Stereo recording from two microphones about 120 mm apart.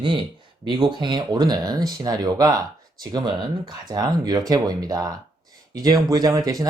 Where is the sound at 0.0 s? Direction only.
45° right (ahead or behind).